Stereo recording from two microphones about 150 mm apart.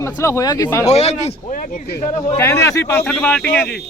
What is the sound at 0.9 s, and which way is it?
Speech, 45° left (ahead or behind).